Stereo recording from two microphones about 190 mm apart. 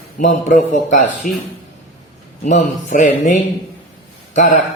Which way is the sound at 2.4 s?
40° left (ahead or behind).